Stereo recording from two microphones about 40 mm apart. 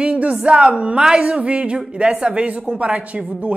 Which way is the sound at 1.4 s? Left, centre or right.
Right.